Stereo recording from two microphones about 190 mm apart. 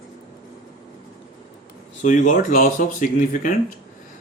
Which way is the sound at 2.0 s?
40° left (ahead or behind).